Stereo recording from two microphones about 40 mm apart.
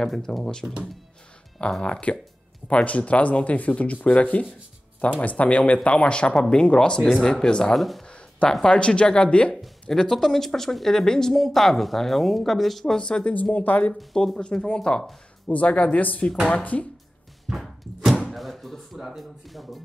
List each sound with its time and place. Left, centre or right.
0.0 s speech: centre
7.7 s speech: centre
8.1 s a sound: left
8.6 s speech: left
9.8 s speech: centre
13.0 s speech: left
13.3 s speech: left
14.1 s speech: centre
15.4 s speech: left
17.6 s a sound: centre
18.3 s speech: centre